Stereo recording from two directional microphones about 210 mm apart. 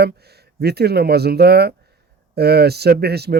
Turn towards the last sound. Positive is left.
turn(degrees=-50)  # may be behind; listen again after turning